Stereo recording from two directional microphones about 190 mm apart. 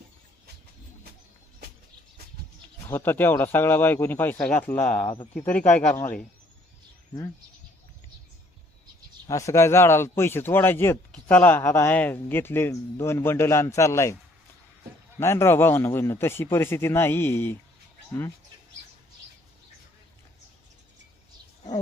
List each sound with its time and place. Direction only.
2.9 s speech: 10° left (ahead or behind)
4.9 s speech: 35° left (ahead or behind)
5.4 s speech: 10° left (ahead or behind)
9.2 s speech: 15° left (ahead or behind)
15.2 s speech: 15° left (ahead or behind)